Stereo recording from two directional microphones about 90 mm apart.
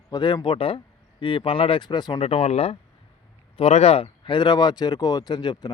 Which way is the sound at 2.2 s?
90° left.